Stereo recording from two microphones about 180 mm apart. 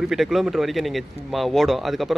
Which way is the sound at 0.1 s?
Centre (ahead or behind).